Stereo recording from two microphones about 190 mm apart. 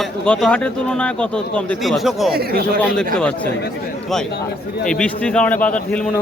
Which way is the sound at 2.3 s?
55° right (ahead or behind).